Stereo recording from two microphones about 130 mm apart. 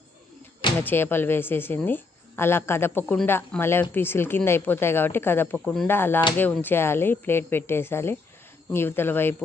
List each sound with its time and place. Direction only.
0.8 s speech: 15° left (ahead or behind)
5.5 s speech: 5° left (ahead or behind)
5.9 s speech: 15° left (ahead or behind)